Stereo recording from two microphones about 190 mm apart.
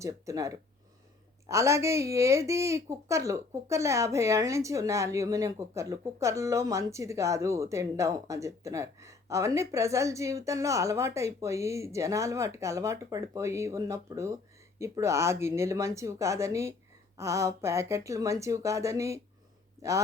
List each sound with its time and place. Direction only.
0.0 s a woman's voice: 15° right (ahead or behind)